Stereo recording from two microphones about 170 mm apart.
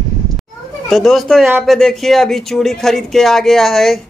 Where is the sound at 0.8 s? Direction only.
Centre (ahead or behind).